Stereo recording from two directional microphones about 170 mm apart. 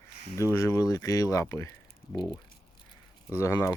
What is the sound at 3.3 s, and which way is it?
Speech, 15° left (ahead or behind).